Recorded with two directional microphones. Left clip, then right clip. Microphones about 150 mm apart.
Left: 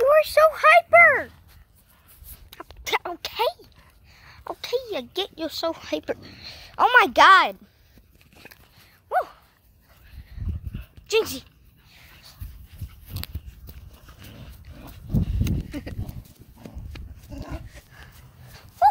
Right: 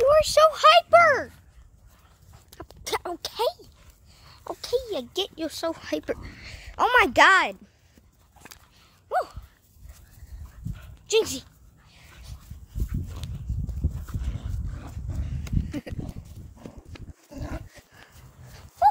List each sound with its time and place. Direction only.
0.0 s a sound: 5° right (ahead or behind)
2.5 s dog: 20° right (ahead or behind)
4.5 s speech: 10° right (ahead or behind)
9.1 s dog: 15° right (ahead or behind)
10.8 s dog: 5° right (ahead or behind)
11.9 s a sound: 5° left (ahead or behind)
13.5 s horse: centre (ahead or behind)
15.7 s horse: 25° right (ahead or behind)
16.9 s pig: 90° left
17.3 s a sound: 10° right (ahead or behind)
18.5 s dog: 20° left (ahead or behind)